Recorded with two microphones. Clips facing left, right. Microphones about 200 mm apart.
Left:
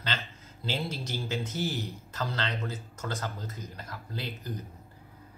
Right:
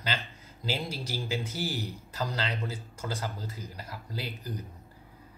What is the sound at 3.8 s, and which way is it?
Speech, 10° right (ahead or behind).